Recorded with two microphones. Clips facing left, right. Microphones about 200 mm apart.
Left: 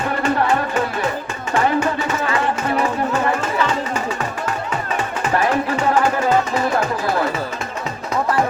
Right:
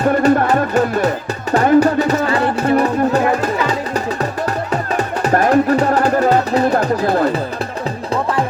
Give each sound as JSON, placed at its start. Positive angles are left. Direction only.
{"t": 0.0, "sound": "speech", "side_deg": -40}
{"t": 1.5, "sound": "music", "side_deg": -40}